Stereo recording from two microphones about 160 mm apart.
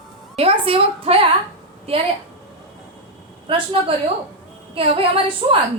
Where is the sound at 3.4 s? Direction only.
35° right (ahead or behind).